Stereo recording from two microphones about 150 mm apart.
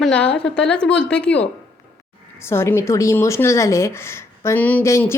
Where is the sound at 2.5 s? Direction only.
15° left (ahead or behind).